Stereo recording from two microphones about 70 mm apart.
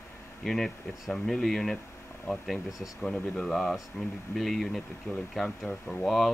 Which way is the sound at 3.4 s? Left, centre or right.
Centre.